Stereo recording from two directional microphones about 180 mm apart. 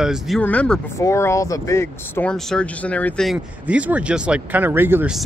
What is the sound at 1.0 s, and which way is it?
Speech, 15° left (ahead or behind).